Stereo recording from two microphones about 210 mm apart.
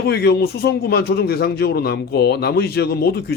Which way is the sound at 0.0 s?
50° left (ahead or behind).